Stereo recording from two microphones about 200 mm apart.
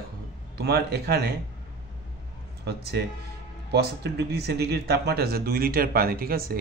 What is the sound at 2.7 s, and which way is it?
Speech, 55° right (ahead or behind).